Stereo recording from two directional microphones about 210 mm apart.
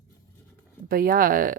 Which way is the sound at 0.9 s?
45° right (ahead or behind).